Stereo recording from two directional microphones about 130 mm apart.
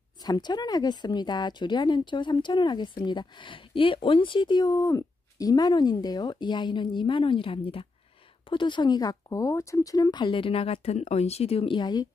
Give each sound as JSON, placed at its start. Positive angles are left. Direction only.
{"t": 0.2, "sound": "speech", "side_deg": 30}